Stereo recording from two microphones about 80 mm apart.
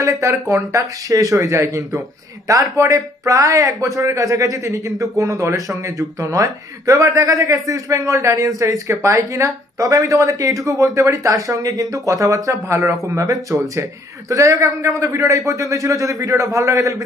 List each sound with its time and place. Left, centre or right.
0.0 s speech: right